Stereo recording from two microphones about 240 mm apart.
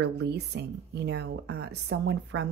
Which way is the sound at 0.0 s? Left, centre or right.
Right.